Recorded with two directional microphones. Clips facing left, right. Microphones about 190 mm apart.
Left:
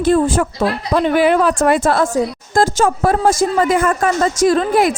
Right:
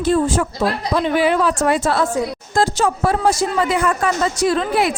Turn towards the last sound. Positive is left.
turn(degrees=45)  # may be behind; listen again after turning